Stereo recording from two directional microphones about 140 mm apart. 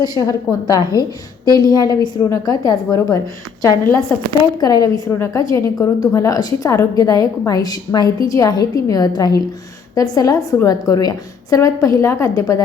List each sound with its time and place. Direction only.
0.0 s a woman's voice: 25° left (ahead or behind)
4.6 s a woman's voice: 25° left (ahead or behind)